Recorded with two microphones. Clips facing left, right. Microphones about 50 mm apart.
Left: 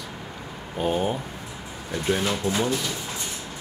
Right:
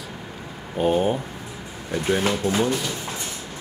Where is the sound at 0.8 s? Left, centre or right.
Centre.